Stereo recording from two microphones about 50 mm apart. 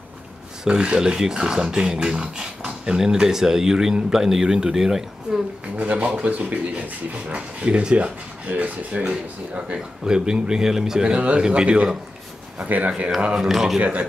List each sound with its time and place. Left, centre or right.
0.7 s speech: centre
5.8 s speech: right
9.8 s speech: centre
12.6 s speech: right
13.4 s a man's voice: centre
13.7 s speech: right